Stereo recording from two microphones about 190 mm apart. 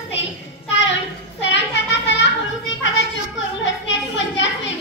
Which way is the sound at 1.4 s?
70° left (ahead or behind).